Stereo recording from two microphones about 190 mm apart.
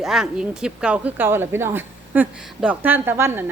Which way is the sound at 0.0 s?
Centre (ahead or behind).